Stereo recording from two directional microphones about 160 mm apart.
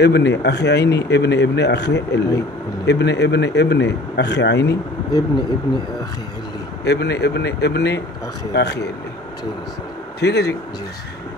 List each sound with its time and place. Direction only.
0.0 s speech: 90° left
6.8 s speech: 90° left
10.2 s speech: 90° left